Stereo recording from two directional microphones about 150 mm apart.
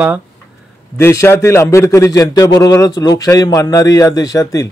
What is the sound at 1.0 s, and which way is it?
A man's voice, 15° left (ahead or behind).